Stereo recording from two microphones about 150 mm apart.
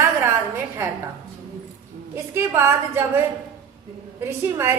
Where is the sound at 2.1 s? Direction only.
20° right (ahead or behind).